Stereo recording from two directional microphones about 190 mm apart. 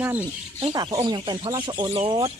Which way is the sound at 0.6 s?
25° right (ahead or behind).